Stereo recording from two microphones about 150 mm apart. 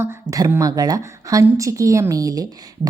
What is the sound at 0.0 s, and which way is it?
A woman's voice, 20° right (ahead or behind).